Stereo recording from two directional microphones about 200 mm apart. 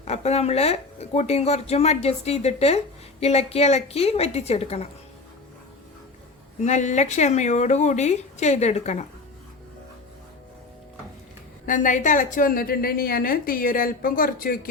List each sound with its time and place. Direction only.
0.0 s speech: 30° left (ahead or behind)
6.7 s speech: 35° left (ahead or behind)
11.6 s a woman's voice: 40° left (ahead or behind)